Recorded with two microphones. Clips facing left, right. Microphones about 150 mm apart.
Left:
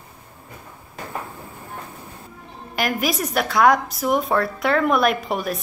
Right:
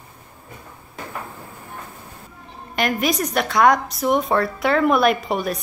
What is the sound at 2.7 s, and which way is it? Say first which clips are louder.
A woman's voice: right 2 dB; 5° left (ahead or behind).